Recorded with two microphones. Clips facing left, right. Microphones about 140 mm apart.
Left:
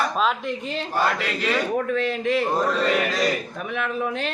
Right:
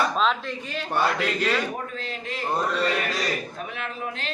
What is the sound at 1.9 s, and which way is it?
Speech, 85° left.